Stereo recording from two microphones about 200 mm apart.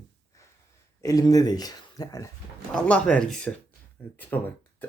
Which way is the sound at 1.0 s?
15° left (ahead or behind).